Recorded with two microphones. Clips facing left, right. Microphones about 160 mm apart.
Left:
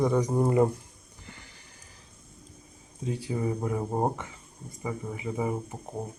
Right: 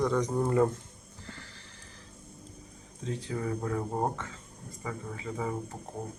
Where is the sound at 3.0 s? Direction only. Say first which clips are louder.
Left 4 dB; 15° left (ahead or behind).